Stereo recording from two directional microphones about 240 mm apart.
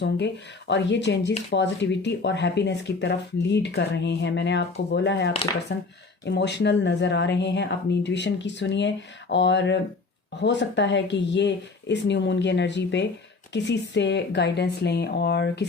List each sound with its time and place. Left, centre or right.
0.7 s speech: left